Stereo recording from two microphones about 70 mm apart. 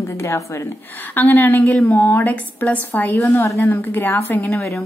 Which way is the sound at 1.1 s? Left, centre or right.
Left.